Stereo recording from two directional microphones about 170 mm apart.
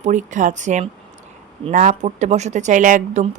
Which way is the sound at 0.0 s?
45° right (ahead or behind).